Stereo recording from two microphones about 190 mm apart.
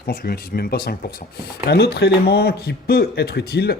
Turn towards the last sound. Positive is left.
turn(degrees=55)  # may be behind; listen again after turning